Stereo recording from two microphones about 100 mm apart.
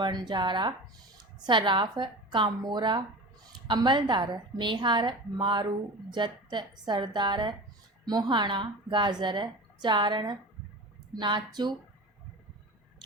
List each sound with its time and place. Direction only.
0.0 s a woman's voice: 50° right (ahead or behind)